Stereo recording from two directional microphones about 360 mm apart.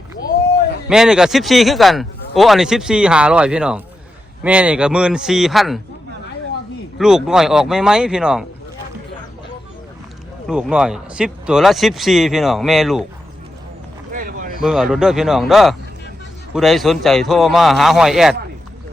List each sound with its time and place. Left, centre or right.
0.9 s speech: centre
7.0 s speech: centre
10.4 s speech: centre
14.1 s a sound: right
14.6 s speech: centre